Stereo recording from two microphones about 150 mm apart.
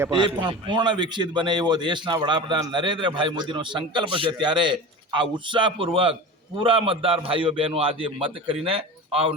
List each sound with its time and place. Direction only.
0.1 s a man's voice: 30° right (ahead or behind)